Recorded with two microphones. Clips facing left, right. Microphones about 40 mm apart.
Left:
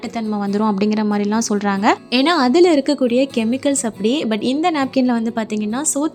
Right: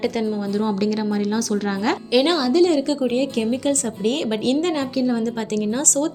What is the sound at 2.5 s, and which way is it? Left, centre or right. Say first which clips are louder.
Speech: left 4 dB; left.